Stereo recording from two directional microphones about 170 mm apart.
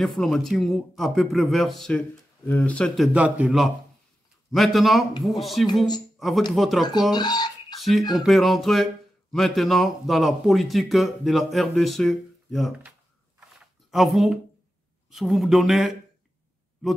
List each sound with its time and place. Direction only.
0.0 s speech: centre (ahead or behind)
3.1 s a man's voice: 10° right (ahead or behind)
7.1 s speech: 25° left (ahead or behind)
8.2 s speech: centre (ahead or behind)